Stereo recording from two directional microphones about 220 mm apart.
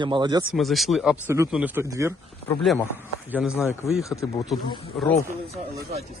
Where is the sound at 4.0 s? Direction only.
15° left (ahead or behind).